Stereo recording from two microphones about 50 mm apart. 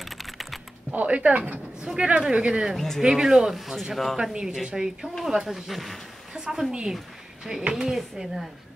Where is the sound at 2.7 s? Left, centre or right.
Centre.